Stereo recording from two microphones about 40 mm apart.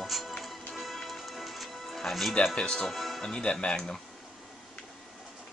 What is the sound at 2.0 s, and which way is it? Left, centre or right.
Speech, centre.